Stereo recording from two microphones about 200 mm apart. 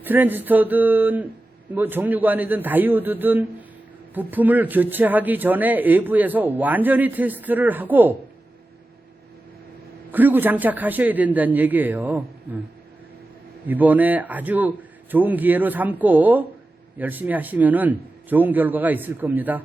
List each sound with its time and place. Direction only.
0.0 s speech: 10° right (ahead or behind)
10.1 s speech: 10° right (ahead or behind)
13.7 s speech: 10° right (ahead or behind)